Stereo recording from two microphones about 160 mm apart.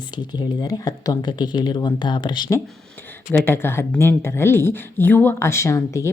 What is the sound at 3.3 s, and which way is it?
Speech, 15° left (ahead or behind).